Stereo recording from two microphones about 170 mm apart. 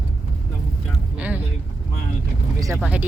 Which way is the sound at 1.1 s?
10° right (ahead or behind).